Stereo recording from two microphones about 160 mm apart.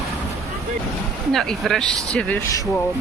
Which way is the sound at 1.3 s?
Centre (ahead or behind).